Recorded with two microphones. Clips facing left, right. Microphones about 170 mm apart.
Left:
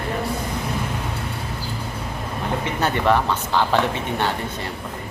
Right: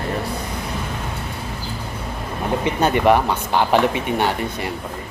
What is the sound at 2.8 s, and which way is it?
Speech, 15° right (ahead or behind).